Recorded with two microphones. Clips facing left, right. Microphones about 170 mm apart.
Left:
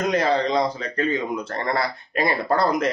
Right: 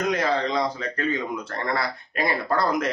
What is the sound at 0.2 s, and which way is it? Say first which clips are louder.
Speech: left 3 dB; 30° left (ahead or behind).